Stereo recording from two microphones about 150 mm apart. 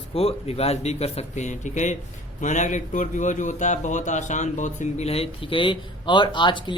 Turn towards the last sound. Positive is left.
turn(degrees=30)  # may be behind; listen again after turning